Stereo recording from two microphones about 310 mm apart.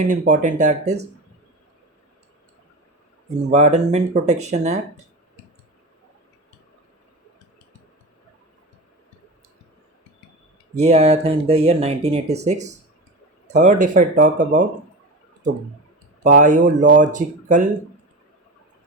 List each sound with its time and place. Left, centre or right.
0.1 s speech: right
3.5 s speech: right
10.8 s speech: centre
16.2 s speech: right